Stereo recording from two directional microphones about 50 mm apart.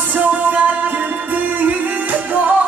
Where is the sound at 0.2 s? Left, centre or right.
Right.